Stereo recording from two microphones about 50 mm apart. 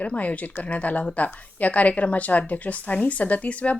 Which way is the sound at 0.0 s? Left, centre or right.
Left.